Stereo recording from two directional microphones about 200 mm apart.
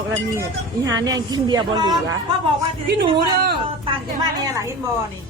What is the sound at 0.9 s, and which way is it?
A woman's voice, 15° right (ahead or behind).